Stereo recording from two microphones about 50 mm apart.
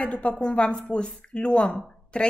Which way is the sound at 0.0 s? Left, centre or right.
Left.